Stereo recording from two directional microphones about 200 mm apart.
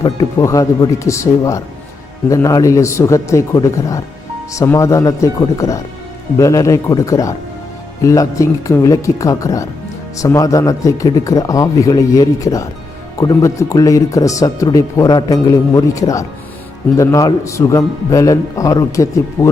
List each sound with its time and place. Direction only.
0.0 s speech: 15° left (ahead or behind)